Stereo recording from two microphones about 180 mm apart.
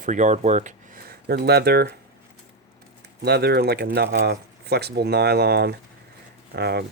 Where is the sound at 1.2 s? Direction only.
65° right (ahead or behind).